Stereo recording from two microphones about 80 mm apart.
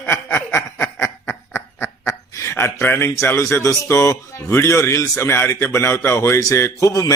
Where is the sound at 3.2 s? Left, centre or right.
Left.